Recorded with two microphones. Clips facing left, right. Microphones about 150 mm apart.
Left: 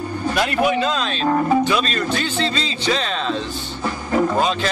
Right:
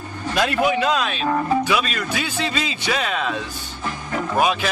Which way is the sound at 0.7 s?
10° right (ahead or behind).